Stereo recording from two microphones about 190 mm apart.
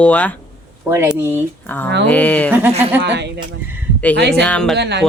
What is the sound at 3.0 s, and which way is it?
Speech, 65° right (ahead or behind).